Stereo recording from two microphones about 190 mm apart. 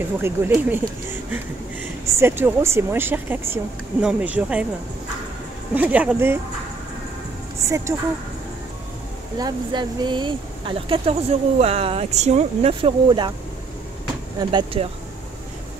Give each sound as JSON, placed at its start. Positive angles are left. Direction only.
{"t": 0.2, "sound": "speech", "side_deg": -10}
{"t": 5.8, "sound": "speech", "side_deg": -10}
{"t": 7.6, "sound": "speech", "side_deg": -15}
{"t": 9.4, "sound": "speech", "side_deg": -25}
{"t": 14.5, "sound": "speech", "side_deg": -25}